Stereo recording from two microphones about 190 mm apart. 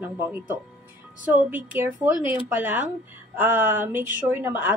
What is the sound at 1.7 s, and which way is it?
A woman's voice, 10° right (ahead or behind).